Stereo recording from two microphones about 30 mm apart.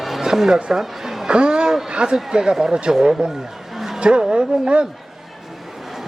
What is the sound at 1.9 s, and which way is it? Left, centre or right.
Speech, right.